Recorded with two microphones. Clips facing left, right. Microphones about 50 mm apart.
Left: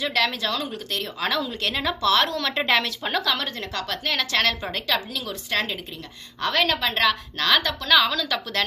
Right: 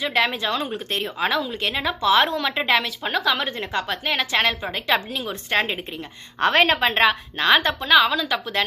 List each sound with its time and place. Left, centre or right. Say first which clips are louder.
0.0 s speech: right 2 dB; right
1.2 s a woman's voice: right 2 dB; centre
4.9 s a woman's voice: right 5 dB; right
7.9 s a woman's voice: right 2 dB; centre